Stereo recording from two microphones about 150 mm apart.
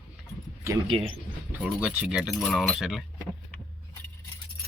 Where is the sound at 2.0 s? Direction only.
5° right (ahead or behind).